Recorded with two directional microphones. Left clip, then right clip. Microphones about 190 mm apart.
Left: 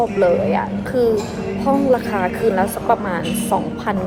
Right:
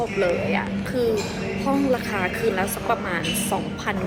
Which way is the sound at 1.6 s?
15° right (ahead or behind).